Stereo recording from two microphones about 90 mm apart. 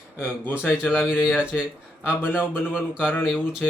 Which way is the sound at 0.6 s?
20° left (ahead or behind).